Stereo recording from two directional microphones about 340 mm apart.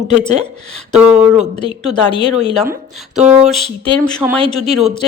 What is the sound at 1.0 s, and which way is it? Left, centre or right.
Speech, centre.